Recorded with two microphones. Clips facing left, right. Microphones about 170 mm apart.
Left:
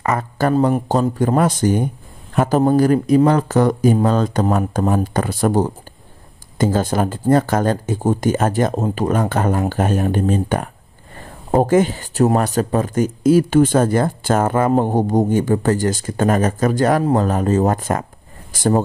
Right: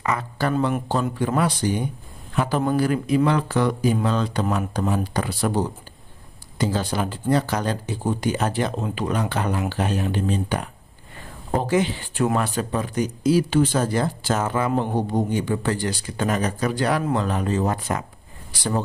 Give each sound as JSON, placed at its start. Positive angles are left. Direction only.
{"t": 0.0, "sound": "speech", "side_deg": 45}